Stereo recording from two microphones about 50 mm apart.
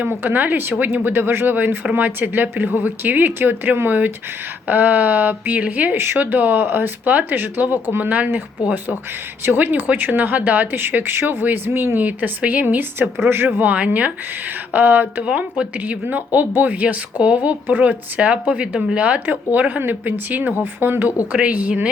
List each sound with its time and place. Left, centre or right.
0.0 s speech: right
6.0 s speech: right
12.6 s speech: right
13.7 s speech: right
21.3 s speech: right